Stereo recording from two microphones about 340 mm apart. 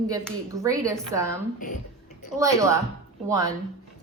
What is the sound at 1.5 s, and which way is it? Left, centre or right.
Speech, left.